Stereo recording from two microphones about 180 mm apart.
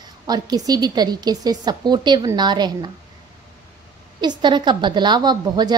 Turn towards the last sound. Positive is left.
turn(degrees=-25)  # may be behind; listen again after turning